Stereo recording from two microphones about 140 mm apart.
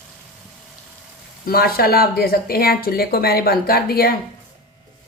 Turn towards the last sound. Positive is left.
turn(degrees=90)